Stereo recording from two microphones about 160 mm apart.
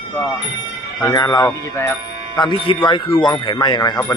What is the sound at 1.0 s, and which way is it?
Speech, 20° left (ahead or behind).